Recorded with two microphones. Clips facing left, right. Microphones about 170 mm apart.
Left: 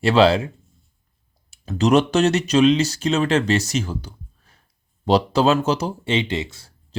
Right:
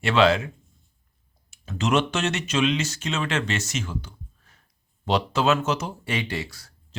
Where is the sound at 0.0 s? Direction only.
35° left (ahead or behind).